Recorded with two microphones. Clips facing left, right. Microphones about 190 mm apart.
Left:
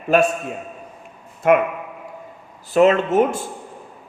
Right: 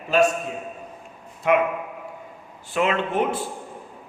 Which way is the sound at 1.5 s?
50° left (ahead or behind).